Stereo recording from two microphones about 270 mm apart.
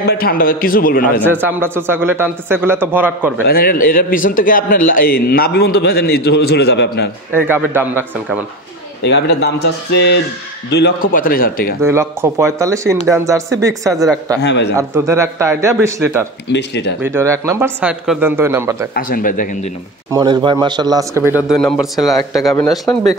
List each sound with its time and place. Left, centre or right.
0.0 s a man's voice: left
1.2 s speech: centre
3.4 s a man's voice: left
7.3 s speech: centre
9.0 s a man's voice: left
10.7 s a man's voice: left
11.8 s speech: centre
14.4 s a man's voice: left
14.8 s speech: centre
16.5 s a man's voice: left
17.0 s speech: centre
18.9 s speech: left
20.1 s a man's voice: centre